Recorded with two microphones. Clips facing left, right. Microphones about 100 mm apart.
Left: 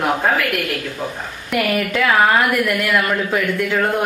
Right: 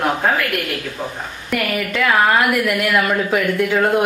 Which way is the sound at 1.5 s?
Centre (ahead or behind).